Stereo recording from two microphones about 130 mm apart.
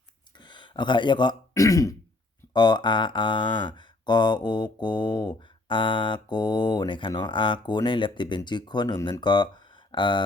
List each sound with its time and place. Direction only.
0.3 s a sound: 35° left (ahead or behind)
1.5 s throat clearing: 25° left (ahead or behind)
2.5 s speech: 35° left (ahead or behind)